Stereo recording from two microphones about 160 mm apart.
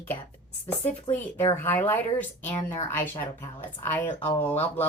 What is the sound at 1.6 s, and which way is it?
Speech, 15° left (ahead or behind).